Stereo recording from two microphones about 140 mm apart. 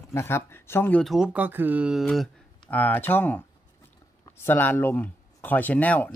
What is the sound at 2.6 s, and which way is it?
Speech, 10° left (ahead or behind).